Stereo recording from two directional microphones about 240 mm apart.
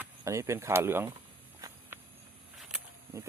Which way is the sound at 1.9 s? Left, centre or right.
Centre.